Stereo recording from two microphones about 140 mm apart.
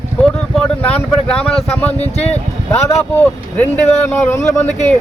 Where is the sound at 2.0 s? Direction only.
50° left (ahead or behind).